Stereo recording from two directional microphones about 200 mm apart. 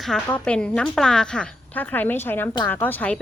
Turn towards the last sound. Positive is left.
turn(degrees=10)  # may be behind; listen again after turning